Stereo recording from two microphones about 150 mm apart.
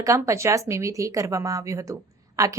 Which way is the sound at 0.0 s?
20° right (ahead or behind).